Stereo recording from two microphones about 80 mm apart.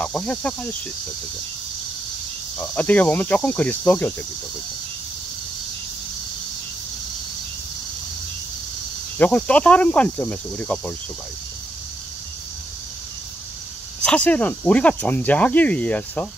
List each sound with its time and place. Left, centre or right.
0.0 s speech: centre
2.6 s speech: centre
9.2 s speech: centre
14.0 s speech: centre